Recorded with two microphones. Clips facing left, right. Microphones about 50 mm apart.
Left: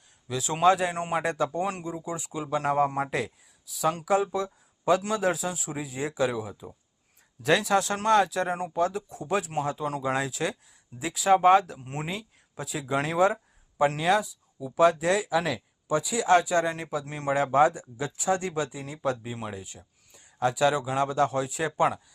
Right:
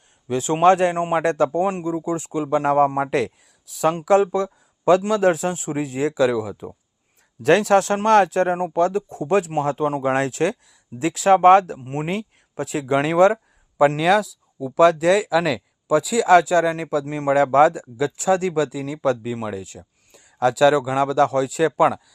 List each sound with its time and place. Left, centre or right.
0.3 s speech: right
0.9 s a man's voice: right
1.2 s speech: right
4.0 s speech: right
5.7 s speech: right
7.4 s speech: right
11.8 s speech: right
12.0 s speech: right
17.1 s speech: right
17.3 s speech: right